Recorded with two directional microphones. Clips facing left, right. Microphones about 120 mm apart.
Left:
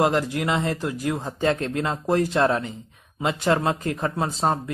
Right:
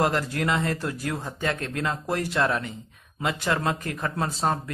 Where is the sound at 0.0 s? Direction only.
20° left (ahead or behind).